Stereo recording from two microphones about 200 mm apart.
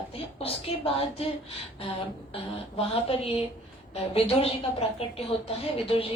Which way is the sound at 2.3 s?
30° left (ahead or behind).